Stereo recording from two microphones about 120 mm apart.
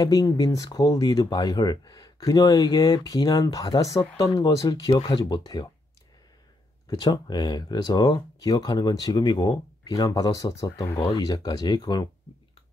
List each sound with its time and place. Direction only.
0.0 s speech: 30° left (ahead or behind)
6.9 s speech: 35° left (ahead or behind)